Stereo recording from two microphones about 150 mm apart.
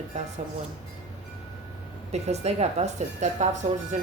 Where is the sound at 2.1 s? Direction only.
45° right (ahead or behind).